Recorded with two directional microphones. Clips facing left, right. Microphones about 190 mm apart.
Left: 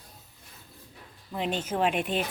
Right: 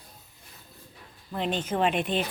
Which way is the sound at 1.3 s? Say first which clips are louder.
Right 1 dB; 5° left (ahead or behind).